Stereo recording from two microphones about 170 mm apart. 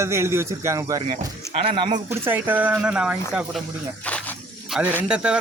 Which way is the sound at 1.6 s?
35° right (ahead or behind).